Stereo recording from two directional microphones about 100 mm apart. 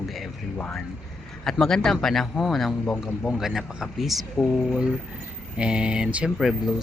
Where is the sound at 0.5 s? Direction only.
10° left (ahead or behind); by 6.2 s 10° right (ahead or behind).